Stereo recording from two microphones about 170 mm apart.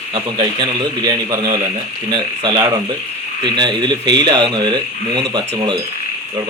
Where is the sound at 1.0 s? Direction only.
20° right (ahead or behind).